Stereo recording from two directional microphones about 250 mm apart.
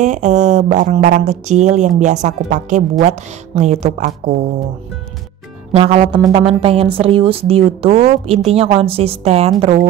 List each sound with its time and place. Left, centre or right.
0.0 s speech: right
5.7 s speech: right